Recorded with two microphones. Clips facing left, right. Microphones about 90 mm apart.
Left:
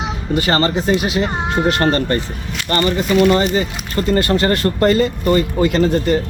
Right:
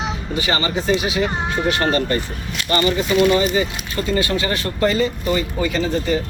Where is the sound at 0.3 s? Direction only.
50° left (ahead or behind).